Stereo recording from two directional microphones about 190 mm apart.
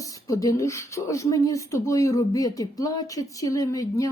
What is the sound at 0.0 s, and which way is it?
Speech, 15° left (ahead or behind).